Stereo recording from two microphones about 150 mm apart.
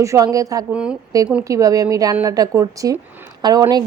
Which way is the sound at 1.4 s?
20° right (ahead or behind).